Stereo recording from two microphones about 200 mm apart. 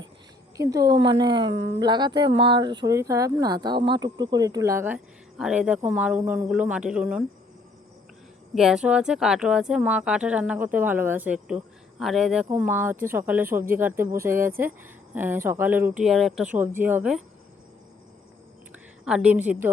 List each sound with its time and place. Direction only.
0.5 s speech: 15° right (ahead or behind)
8.5 s speech: 5° right (ahead or behind)
19.0 s speech: 5° right (ahead or behind)